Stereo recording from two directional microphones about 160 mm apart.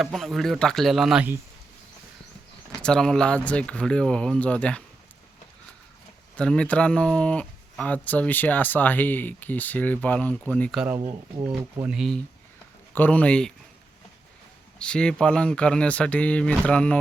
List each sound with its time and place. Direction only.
0.0 s speech: centre (ahead or behind)
2.8 s speech: 5° left (ahead or behind)
6.3 s speech: 5° left (ahead or behind)
10.8 s speech: 10° right (ahead or behind)
12.9 s speech: 10° left (ahead or behind)
14.8 s speech: 5° left (ahead or behind)